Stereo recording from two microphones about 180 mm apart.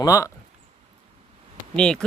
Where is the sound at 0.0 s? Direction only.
20° left (ahead or behind).